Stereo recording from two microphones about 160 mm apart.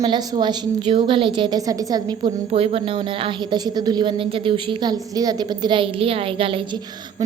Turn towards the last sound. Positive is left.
turn(degrees=-35)  # may be behind; listen again after turning